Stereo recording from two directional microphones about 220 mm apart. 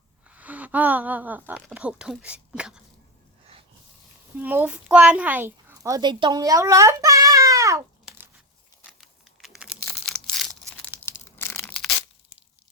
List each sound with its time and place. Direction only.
0.3 s speech: 5° right (ahead or behind)
4.4 s a woman's voice: 10° right (ahead or behind)
8.9 s computer keyboard: centre (ahead or behind)
9.9 s a sound: centre (ahead or behind)
11.0 s tearing: 10° left (ahead or behind)